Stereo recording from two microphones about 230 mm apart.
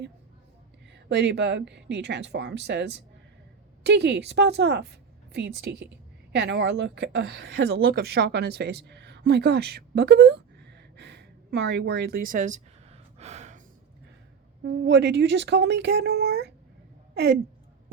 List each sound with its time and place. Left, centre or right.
0.9 s a woman's voice: right
13.1 s gasp: right
14.6 s a woman's voice: right